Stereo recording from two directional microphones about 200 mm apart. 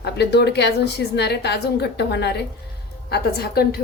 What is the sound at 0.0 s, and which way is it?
A woman's voice, 55° left (ahead or behind).